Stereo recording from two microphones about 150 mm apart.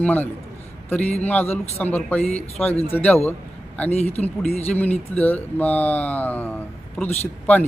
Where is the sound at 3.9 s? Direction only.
45° left (ahead or behind).